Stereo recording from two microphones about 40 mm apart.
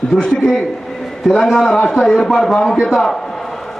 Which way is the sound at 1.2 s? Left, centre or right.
Centre.